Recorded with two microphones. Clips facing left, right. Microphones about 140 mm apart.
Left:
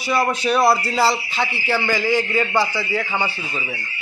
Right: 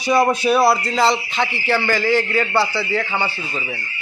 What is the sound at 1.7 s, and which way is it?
A man's voice, 15° left (ahead or behind).